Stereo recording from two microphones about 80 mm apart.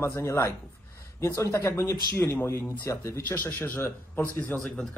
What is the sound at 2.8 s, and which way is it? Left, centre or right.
Speech, left.